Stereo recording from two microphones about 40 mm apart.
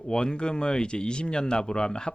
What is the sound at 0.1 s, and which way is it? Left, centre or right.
Speech, left.